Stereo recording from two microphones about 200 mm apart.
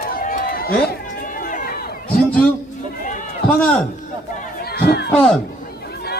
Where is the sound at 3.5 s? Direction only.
5° left (ahead or behind).